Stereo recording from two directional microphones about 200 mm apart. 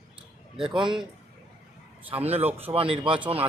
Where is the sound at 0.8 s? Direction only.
25° right (ahead or behind).